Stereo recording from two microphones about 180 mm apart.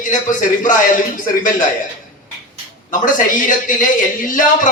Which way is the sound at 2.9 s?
45° left (ahead or behind).